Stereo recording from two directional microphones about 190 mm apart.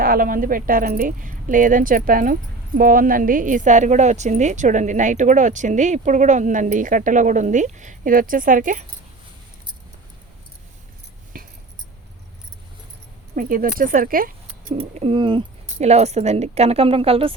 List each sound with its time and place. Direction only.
0.0 s speech: 50° right (ahead or behind)
11.3 s a sound: 45° right (ahead or behind)
13.3 s speech: 45° right (ahead or behind)
14.8 s speech: 30° right (ahead or behind)